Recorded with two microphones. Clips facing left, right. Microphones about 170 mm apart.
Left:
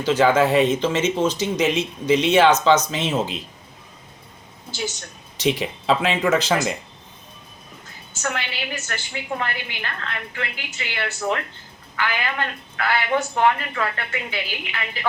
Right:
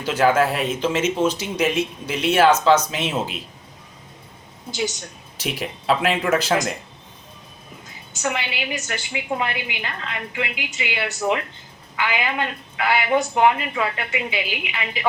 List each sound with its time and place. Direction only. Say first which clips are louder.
0.0 s a woman's voice: left 1 dB; 10° right (ahead or behind)
5.4 s a woman's voice: left 6 dB; 10° right (ahead or behind)
8.2 s a woman's voice: right 2 dB; 15° right (ahead or behind)